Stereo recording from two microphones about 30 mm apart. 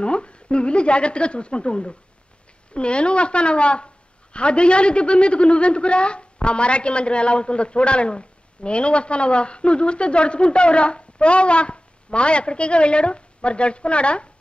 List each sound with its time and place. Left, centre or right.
0.0 s a woman's voice: left